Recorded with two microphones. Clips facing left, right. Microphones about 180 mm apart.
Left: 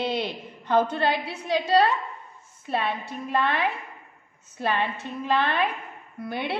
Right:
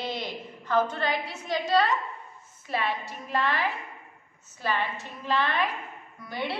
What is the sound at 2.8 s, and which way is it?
A woman's voice, 60° left (ahead or behind).